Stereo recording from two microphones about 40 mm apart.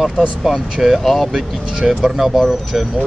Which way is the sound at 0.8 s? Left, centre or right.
Centre.